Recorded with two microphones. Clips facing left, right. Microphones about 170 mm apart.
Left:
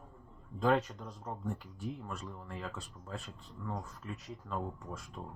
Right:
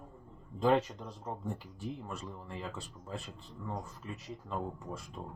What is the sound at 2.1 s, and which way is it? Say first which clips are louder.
Speech: right 1 dB; 5° right (ahead or behind).